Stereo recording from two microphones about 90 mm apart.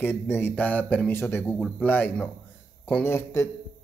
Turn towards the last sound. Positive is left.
turn(degrees=30)  # may be behind; listen again after turning